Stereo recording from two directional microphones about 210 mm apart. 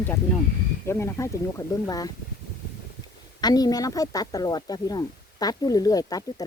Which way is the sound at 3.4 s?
20° left (ahead or behind).